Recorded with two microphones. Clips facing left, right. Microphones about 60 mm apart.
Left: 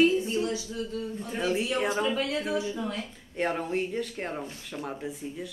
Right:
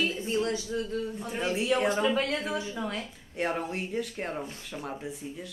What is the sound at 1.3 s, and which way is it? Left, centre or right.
Speech, centre.